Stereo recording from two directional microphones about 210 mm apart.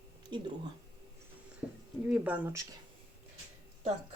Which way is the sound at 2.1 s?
5° right (ahead or behind).